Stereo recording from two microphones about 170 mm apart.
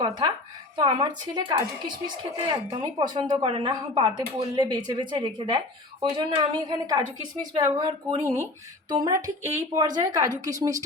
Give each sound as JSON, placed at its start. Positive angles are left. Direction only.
{"t": 0.0, "sound": "a woman's voice", "side_deg": -25}